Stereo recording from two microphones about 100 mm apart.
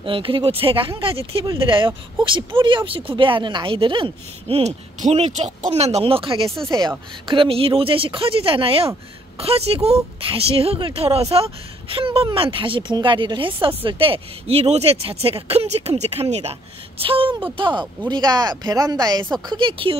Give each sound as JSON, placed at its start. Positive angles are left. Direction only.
{"t": 0.0, "sound": "speech", "side_deg": -60}
{"t": 1.7, "sound": "speech", "side_deg": -55}
{"t": 6.7, "sound": "speech", "side_deg": -45}
{"t": 7.2, "sound": "speech", "side_deg": -65}
{"t": 9.4, "sound": "speech", "side_deg": -85}
{"t": 11.3, "sound": "speech", "side_deg": -70}
{"t": 17.0, "sound": "speech", "side_deg": -65}
{"t": 18.1, "sound": "speech", "side_deg": -45}
{"t": 19.4, "sound": "speech", "side_deg": -55}